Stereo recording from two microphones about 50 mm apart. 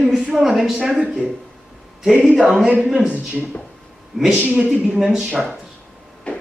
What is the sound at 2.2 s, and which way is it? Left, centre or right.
Speech, centre.